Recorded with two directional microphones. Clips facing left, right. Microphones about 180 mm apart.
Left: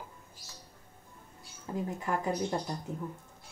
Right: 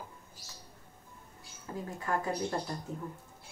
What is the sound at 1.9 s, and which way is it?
Speech, 20° left (ahead or behind).